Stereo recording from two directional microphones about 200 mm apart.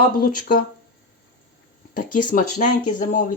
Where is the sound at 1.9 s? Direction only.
40° left (ahead or behind).